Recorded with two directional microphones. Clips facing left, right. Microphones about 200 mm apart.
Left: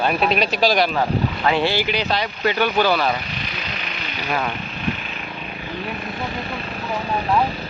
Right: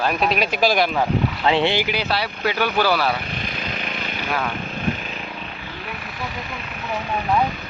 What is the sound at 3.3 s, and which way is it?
Vehicle, 50° right (ahead or behind).